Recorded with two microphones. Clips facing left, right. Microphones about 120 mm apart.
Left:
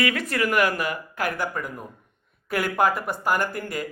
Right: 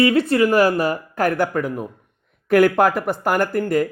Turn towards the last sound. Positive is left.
turn(degrees=-50)  # may be behind; listen again after turning